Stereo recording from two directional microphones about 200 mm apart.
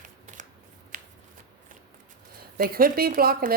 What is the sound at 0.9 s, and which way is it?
Shuffling cards, 45° right (ahead or behind).